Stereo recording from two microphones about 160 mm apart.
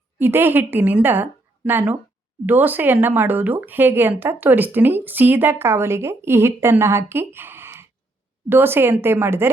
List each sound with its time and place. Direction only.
0.2 s speech: 15° right (ahead or behind)
7.3 s a sound: 15° right (ahead or behind)
8.4 s speech: 15° right (ahead or behind)